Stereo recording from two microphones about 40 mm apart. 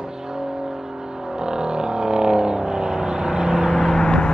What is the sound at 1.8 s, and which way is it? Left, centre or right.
Vehicle, centre.